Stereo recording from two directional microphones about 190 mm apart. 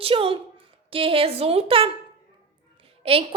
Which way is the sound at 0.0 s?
30° right (ahead or behind).